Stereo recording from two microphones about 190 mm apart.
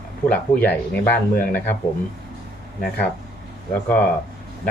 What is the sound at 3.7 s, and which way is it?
Speech, 10° left (ahead or behind).